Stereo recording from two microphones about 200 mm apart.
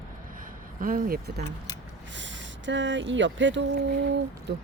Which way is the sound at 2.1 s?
65° right (ahead or behind).